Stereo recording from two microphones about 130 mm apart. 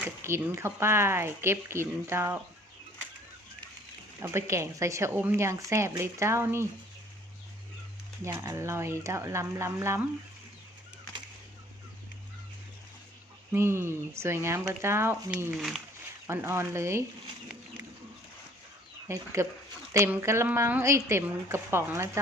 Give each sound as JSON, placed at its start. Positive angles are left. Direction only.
{"t": 0.0, "sound": "speech", "side_deg": -20}
{"t": 4.2, "sound": "speech", "side_deg": -20}
{"t": 8.2, "sound": "speech", "side_deg": -25}
{"t": 13.5, "sound": "speech", "side_deg": -20}
{"t": 15.5, "sound": "speech", "side_deg": 0}
{"t": 16.2, "sound": "speech", "side_deg": -20}
{"t": 19.0, "sound": "speech", "side_deg": -20}